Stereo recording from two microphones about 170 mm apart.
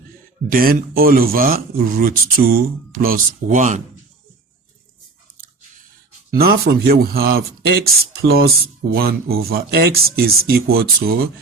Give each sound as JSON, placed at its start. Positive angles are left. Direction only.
{"t": 0.5, "sound": "speech", "side_deg": -60}
{"t": 6.3, "sound": "speech", "side_deg": -65}